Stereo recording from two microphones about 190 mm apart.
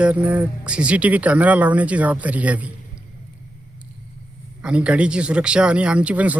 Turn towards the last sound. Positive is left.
turn(degrees=-5)  # may be behind; listen again after turning